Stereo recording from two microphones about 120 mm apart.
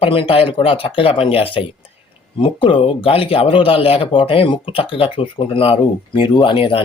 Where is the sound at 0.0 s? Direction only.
50° left (ahead or behind).